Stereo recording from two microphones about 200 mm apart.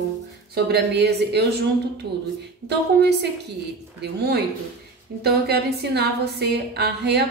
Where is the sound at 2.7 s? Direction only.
55° right (ahead or behind).